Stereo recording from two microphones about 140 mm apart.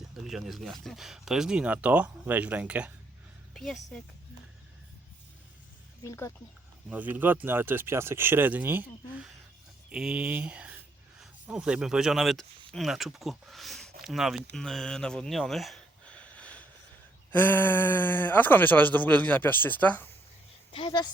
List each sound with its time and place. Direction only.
0.3 s speech: centre (ahead or behind)
3.5 s a woman's voice: centre (ahead or behind)
6.1 s speech: 20° left (ahead or behind)
6.9 s speech: 10° right (ahead or behind); by 20.1 s 10° left (ahead or behind)
20.7 s speech: 35° left (ahead or behind)